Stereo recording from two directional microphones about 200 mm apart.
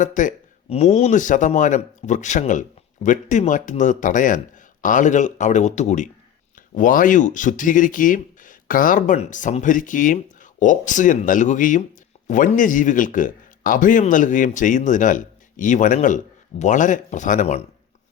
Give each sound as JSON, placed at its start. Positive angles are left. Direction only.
{"t": 0.0, "sound": "speech", "side_deg": 40}